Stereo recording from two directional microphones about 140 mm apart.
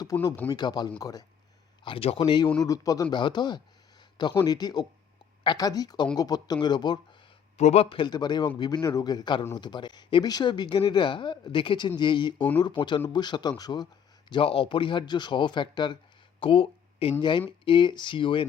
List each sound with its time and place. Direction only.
0.1 s speech: 30° left (ahead or behind)
1.8 s speech: 40° left (ahead or behind)
2.6 s speech: 25° left (ahead or behind)
7.5 s speech: 50° left (ahead or behind)